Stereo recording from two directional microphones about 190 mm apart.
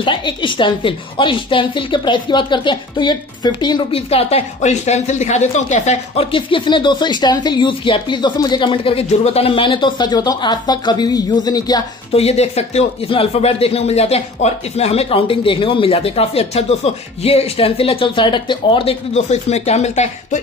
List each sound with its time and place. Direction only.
0.0 s a woman's voice: 25° left (ahead or behind)
12.1 s speech: 35° left (ahead or behind)